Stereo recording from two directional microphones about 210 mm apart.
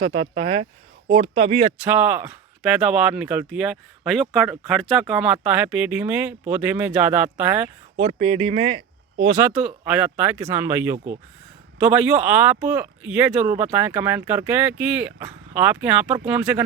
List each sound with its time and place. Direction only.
0.0 s speech: 30° right (ahead or behind)
1.8 s speech: 10° right (ahead or behind)
7.9 s speech: 25° right (ahead or behind)
9.4 s speech: 5° right (ahead or behind)
10.9 s speech: 35° right (ahead or behind)
11.8 s speech: 5° right (ahead or behind)